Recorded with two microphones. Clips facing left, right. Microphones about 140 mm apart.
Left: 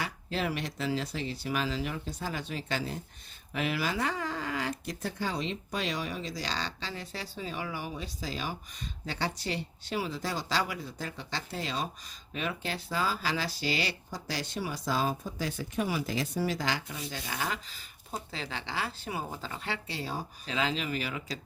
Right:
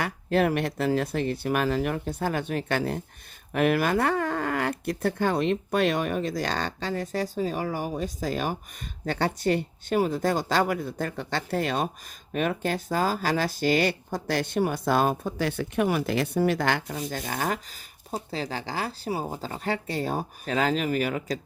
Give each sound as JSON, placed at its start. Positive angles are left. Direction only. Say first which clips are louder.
{"t": 0.0, "sound": "speech", "louder": "right 9 dB", "side_deg": -55}
{"t": 16.9, "sound": "speech", "louder": "right 7 dB", "side_deg": -45}